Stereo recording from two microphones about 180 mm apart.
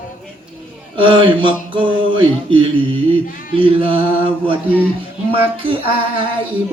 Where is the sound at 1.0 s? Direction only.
30° right (ahead or behind).